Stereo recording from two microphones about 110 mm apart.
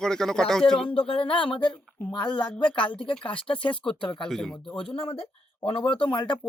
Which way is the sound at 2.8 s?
50° left (ahead or behind).